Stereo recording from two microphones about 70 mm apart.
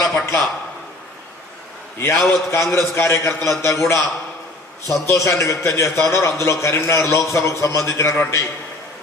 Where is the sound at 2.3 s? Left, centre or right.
Left.